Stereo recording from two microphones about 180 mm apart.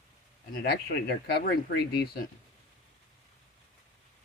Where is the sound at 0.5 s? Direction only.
60° left (ahead or behind).